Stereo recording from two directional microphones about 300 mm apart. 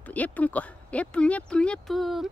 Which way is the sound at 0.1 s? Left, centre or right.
Centre.